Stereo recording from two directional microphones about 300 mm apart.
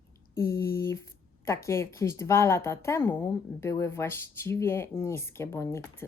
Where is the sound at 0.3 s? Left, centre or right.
Centre.